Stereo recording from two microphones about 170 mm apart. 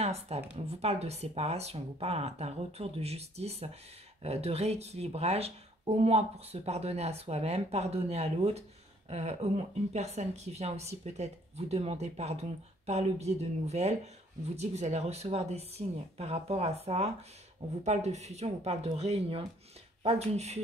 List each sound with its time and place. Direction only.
0.0 s speech: 40° right (ahead or behind)